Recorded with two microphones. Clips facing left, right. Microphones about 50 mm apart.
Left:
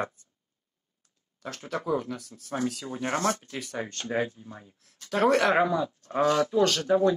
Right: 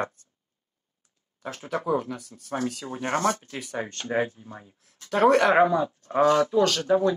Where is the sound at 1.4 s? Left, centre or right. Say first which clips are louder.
Right 3 dB; centre.